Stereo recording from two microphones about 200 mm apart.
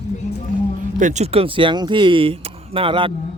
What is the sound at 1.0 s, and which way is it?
Speech, 35° right (ahead or behind).